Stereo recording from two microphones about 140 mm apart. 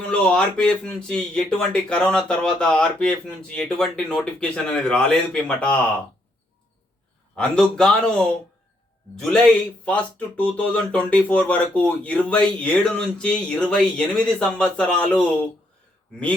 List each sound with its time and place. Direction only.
0.0 s speech: 5° left (ahead or behind)
7.3 s speech: 5° left (ahead or behind)